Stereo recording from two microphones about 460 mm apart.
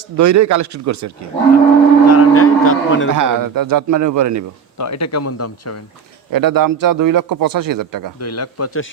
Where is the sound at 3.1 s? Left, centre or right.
Right.